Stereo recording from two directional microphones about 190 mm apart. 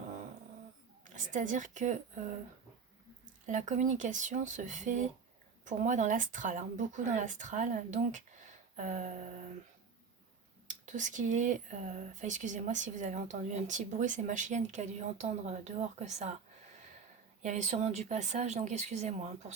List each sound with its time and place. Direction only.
1.0 s speech: 40° right (ahead or behind)
3.4 s speech: 40° right (ahead or behind)
10.7 s speech: 40° right (ahead or behind)
17.4 s speech: 40° right (ahead or behind)